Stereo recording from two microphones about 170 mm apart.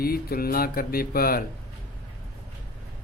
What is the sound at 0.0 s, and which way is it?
Speech, 60° left (ahead or behind).